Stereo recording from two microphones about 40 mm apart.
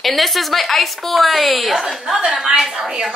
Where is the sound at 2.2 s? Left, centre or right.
Centre.